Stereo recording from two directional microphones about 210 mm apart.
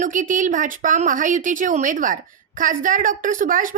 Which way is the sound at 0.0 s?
40° right (ahead or behind).